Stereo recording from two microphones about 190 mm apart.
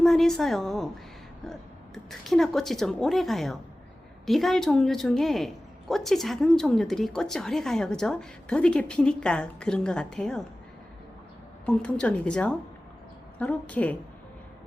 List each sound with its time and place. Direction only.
0.0 s a woman's voice: centre (ahead or behind)
2.0 s a woman's voice: centre (ahead or behind)
11.6 s a woman's voice: 5° left (ahead or behind)